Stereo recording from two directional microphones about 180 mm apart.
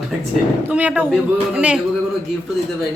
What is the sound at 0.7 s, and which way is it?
A man's voice, 5° right (ahead or behind).